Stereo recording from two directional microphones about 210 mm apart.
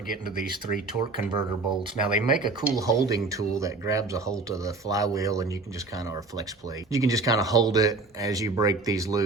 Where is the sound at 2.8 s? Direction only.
15° right (ahead or behind).